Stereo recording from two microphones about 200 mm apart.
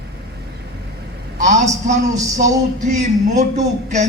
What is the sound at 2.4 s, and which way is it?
Music, 35° right (ahead or behind).